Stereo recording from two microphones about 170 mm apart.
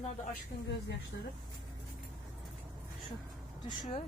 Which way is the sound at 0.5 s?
65° left (ahead or behind).